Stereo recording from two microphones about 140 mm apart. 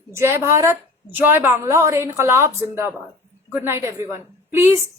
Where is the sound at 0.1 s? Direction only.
15° right (ahead or behind).